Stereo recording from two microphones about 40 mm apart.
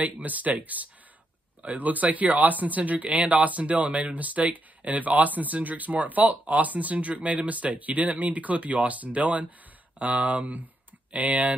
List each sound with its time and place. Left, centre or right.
0.0 s speech: right